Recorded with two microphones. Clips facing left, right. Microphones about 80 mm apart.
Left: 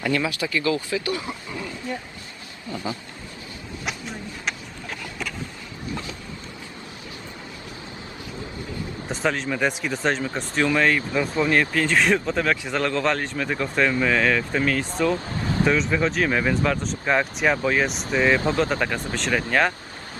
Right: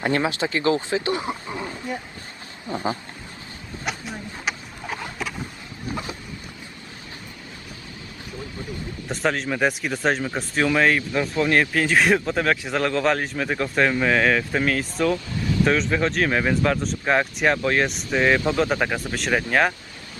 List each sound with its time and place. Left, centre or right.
0.0 s speech: right
2.6 s a sound: right
4.4 s a sound: centre
9.0 s speech: centre
15.1 s vehicle: left
15.6 s speech: centre